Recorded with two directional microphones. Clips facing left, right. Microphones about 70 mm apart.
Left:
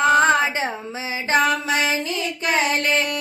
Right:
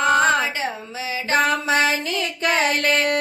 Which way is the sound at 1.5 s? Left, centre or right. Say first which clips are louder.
Right 2 dB; right.